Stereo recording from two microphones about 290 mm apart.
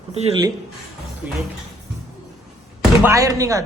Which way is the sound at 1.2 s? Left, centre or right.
Centre.